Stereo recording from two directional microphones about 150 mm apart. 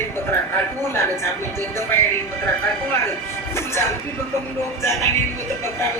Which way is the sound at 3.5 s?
15° left (ahead or behind).